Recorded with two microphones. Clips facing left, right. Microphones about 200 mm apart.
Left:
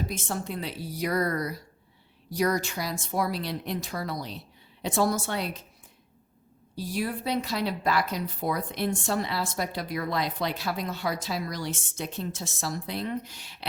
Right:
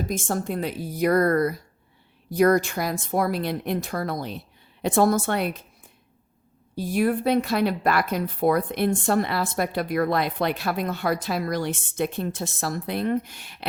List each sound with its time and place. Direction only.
0.0 s a woman's voice: 45° right (ahead or behind)
6.7 s speech: 55° right (ahead or behind)